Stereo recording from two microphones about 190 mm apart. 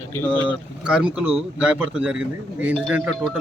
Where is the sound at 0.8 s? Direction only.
5° right (ahead or behind).